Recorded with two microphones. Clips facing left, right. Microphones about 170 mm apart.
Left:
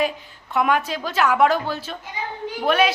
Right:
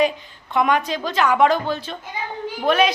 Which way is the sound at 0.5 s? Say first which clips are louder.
Right 1 dB; 5° left (ahead or behind).